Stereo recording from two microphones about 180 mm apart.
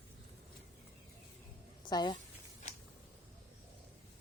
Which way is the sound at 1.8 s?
25° left (ahead or behind).